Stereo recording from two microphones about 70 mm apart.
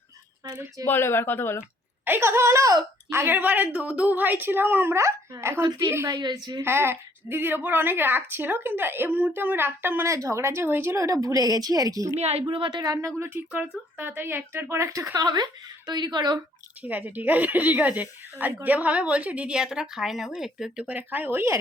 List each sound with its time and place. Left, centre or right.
0.9 s speech: left
2.0 s a woman's voice: right
4.9 s a woman's voice: right
6.1 s a woman's voice: right
6.6 s a woman's voice: right
10.1 s a woman's voice: right
10.9 s speech: right
13.1 s a woman's voice: right
13.5 s speech: right
14.8 s speech: right
15.1 s a woman's voice: right
16.8 s speech: right; by 20.8 s centre
20.8 s speech: right